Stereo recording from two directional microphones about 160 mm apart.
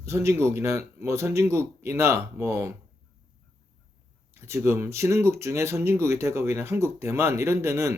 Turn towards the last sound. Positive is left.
turn(degrees=-15)  # may be behind; listen again after turning